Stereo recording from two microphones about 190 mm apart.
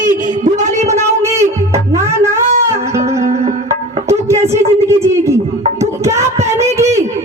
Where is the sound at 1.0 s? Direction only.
15° right (ahead or behind).